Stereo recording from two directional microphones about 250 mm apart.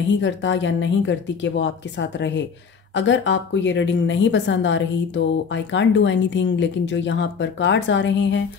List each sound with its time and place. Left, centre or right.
0.1 s a woman's voice: left